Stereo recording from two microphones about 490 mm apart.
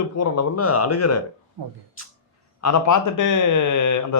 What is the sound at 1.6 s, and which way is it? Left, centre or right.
Speech, right.